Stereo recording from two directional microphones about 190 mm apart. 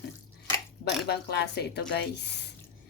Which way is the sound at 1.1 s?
60° left (ahead or behind).